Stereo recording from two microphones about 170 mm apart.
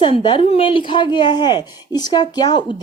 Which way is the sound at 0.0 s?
30° left (ahead or behind).